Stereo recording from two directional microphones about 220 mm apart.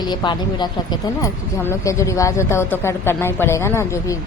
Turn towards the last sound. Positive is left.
turn(degrees=10)  # may be behind; listen again after turning